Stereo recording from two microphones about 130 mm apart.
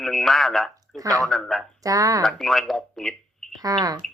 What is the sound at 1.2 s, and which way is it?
Speech, centre (ahead or behind).